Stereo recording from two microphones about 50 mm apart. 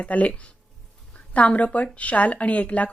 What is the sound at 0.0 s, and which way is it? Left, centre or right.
Speech, left.